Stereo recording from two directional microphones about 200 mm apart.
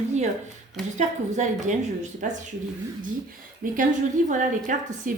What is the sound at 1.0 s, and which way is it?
A woman's voice, 35° right (ahead or behind).